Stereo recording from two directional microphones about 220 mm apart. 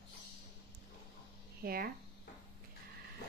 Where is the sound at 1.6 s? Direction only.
40° right (ahead or behind).